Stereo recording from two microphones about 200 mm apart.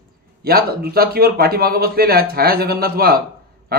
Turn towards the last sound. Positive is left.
turn(degrees=-50)  # may be behind; listen again after turning